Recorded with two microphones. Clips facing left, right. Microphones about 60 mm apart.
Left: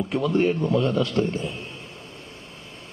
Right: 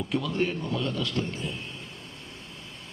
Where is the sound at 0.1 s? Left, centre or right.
Left.